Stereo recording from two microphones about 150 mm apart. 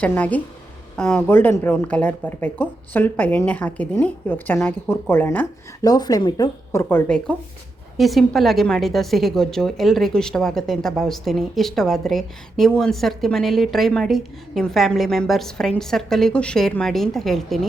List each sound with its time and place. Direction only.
0.0 s speech: 10° left (ahead or behind)
5.8 s speech: 25° left (ahead or behind)
6.8 s a woman's voice: 5° left (ahead or behind)